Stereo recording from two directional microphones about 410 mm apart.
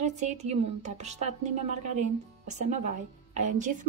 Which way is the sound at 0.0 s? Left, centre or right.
Centre.